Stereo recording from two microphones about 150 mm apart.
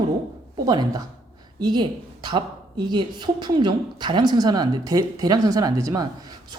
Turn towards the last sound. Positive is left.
turn(degrees=-25)  # may be behind; listen again after turning